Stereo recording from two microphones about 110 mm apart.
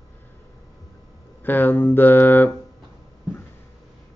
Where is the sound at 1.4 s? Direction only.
15° left (ahead or behind).